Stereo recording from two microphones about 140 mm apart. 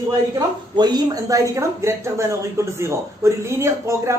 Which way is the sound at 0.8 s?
25° right (ahead or behind).